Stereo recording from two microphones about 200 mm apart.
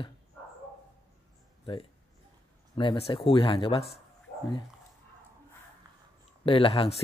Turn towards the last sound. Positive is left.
turn(degrees=30)  # may be behind; listen again after turning